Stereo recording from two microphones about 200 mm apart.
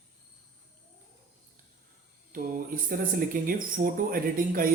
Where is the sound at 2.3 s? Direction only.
45° right (ahead or behind).